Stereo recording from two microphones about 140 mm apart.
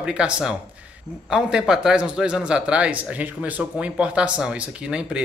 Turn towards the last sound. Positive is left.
turn(degrees=-5)  # may be behind; listen again after turning